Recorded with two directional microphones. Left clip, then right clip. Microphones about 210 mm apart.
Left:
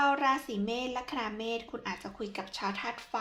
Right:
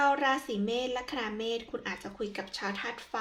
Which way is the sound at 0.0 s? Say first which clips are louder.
Right 1 dB; 15° left (ahead or behind).